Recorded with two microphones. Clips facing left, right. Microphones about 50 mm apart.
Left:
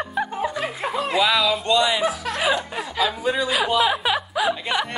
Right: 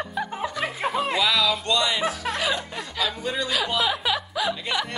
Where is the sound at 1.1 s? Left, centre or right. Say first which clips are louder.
Left 6 dB; centre.